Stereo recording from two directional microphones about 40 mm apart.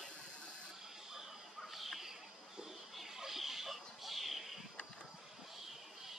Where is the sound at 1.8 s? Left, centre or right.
Centre.